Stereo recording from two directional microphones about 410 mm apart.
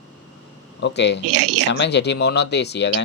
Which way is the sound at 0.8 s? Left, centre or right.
Left.